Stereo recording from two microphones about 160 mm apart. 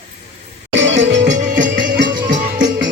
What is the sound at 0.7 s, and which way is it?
Music, 90° right.